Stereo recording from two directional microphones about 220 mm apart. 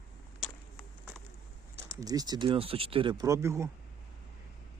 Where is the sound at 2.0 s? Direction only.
15° right (ahead or behind).